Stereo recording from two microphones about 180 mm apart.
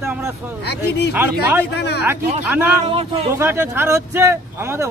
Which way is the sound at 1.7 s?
65° left (ahead or behind).